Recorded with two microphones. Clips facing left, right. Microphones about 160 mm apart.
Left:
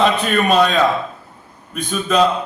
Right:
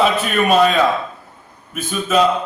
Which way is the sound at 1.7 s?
5° right (ahead or behind).